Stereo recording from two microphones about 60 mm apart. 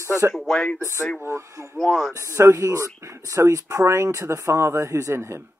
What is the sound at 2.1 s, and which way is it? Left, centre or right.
Speech, right.